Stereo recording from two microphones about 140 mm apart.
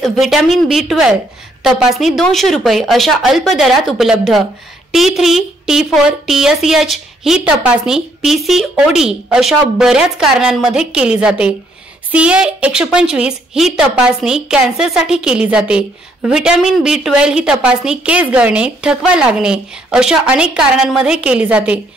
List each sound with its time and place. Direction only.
0.0 s a woman's voice: centre (ahead or behind)